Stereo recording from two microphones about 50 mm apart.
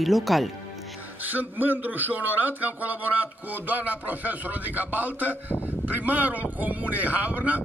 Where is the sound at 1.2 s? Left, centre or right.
Right.